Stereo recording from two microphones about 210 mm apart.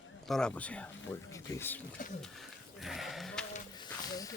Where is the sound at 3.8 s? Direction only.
15° left (ahead or behind).